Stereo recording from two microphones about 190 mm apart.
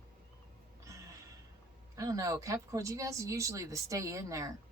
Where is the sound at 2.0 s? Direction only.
20° right (ahead or behind).